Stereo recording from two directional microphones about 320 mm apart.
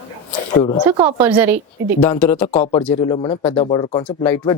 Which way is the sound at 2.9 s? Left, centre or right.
Centre.